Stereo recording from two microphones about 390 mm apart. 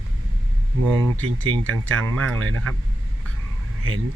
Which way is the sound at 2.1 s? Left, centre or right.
Right.